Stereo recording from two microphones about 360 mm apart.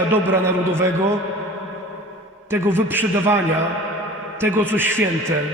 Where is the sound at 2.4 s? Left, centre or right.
Centre.